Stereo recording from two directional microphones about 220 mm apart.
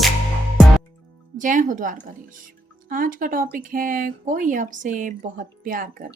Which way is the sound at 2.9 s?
40° right (ahead or behind).